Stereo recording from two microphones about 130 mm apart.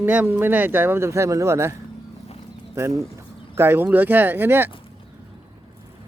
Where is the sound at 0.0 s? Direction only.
15° right (ahead or behind).